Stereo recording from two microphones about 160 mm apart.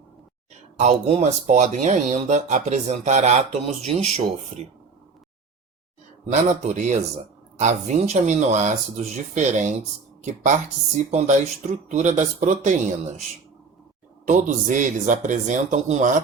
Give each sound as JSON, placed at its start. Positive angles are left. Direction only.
{"t": 0.8, "sound": "speech", "side_deg": -45}
{"t": 6.3, "sound": "speech", "side_deg": -45}
{"t": 11.1, "sound": "speech", "side_deg": -45}
{"t": 14.3, "sound": "speech", "side_deg": -50}